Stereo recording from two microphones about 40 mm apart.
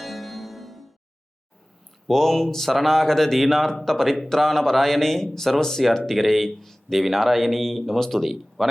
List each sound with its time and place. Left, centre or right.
0.0 s music: centre
2.0 s speech: centre